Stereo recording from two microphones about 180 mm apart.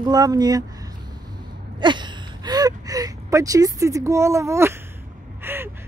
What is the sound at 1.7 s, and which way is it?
Gasp, 25° right (ahead or behind).